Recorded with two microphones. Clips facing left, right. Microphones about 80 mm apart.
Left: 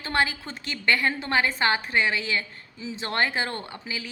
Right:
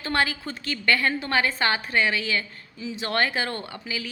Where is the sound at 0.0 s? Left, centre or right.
Left.